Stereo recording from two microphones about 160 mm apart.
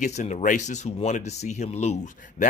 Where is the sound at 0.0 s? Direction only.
45° left (ahead or behind).